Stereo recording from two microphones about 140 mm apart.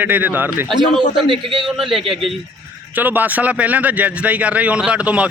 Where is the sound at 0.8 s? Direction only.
35° right (ahead or behind).